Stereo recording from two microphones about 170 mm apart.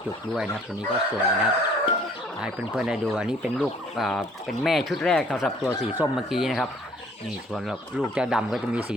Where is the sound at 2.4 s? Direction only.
5° right (ahead or behind).